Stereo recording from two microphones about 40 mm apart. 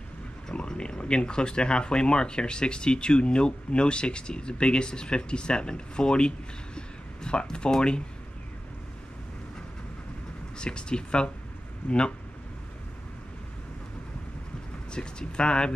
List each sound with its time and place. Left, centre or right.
0.5 s speech: centre
10.6 s speech: left
14.9 s speech: left